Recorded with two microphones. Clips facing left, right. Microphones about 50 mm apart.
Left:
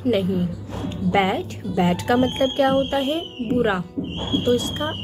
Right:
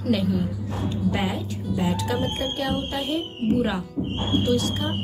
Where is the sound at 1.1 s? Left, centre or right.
Left.